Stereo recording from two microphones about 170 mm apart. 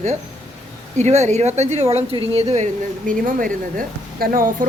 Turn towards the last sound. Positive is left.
turn(degrees=-55)  # may be behind; listen again after turning